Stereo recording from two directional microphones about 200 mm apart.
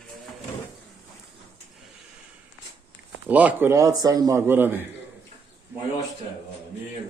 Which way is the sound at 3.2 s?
10° right (ahead or behind).